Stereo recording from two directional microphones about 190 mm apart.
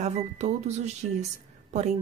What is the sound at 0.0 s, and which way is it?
Speech, 35° right (ahead or behind).